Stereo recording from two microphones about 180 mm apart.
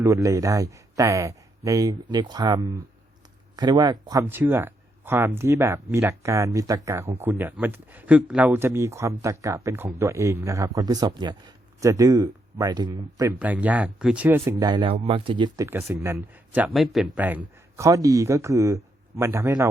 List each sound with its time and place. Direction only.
0.0 s speech: 15° right (ahead or behind)
13.4 s speech: 10° right (ahead or behind)
14.6 s speech: 25° right (ahead or behind)